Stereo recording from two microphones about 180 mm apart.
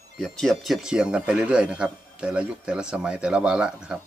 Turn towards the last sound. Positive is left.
turn(degrees=-5)  # may be behind; listen again after turning